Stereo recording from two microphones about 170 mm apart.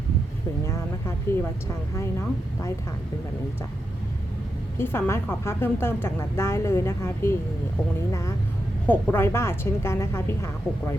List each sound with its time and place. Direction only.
0.6 s vehicle: 15° left (ahead or behind)
2.0 s a woman's voice: 15° left (ahead or behind)
4.8 s a woman's voice: 15° left (ahead or behind)